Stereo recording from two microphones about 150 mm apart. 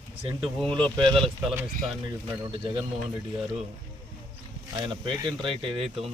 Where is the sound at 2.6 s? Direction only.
30° right (ahead or behind).